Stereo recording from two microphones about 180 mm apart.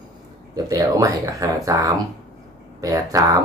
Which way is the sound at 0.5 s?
20° right (ahead or behind).